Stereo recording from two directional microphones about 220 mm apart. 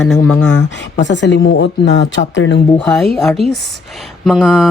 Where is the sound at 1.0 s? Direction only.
55° left (ahead or behind).